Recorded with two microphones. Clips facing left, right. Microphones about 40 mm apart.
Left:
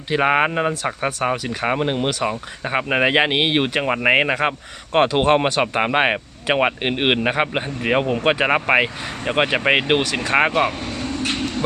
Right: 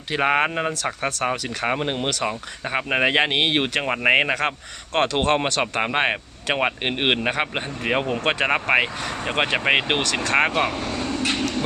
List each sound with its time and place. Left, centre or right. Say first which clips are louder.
0.1 s speech: left 3 dB; centre
4.9 s speech: left 4 dB; centre
10.8 s vehicle: right 1 dB; centre